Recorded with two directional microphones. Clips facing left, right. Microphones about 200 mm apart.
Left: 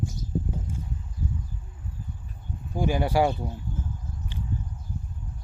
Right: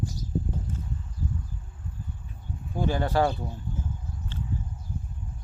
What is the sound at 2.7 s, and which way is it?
Speech, 15° left (ahead or behind).